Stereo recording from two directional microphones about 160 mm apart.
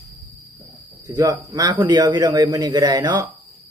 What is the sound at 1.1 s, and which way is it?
A man's voice, 20° right (ahead or behind).